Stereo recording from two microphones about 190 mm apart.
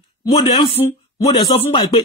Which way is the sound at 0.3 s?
25° left (ahead or behind).